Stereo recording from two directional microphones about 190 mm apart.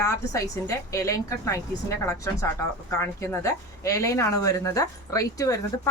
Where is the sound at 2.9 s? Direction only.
15° left (ahead or behind).